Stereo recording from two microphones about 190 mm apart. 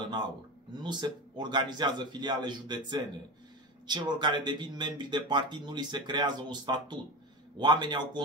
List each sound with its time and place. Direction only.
0.7 s speech: 25° right (ahead or behind)